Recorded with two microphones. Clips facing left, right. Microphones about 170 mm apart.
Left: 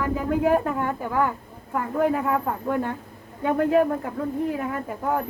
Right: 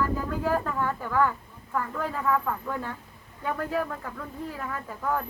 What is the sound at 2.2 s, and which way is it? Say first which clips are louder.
Speech: left 2 dB; 30° left (ahead or behind).